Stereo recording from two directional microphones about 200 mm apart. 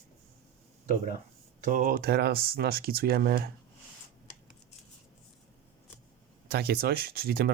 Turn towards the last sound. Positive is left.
turn(degrees=-50)  # may be behind; listen again after turning